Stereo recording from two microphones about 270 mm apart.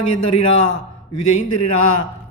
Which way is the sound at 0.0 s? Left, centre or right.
Left.